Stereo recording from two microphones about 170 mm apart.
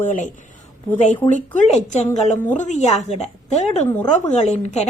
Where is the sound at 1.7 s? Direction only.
40° left (ahead or behind).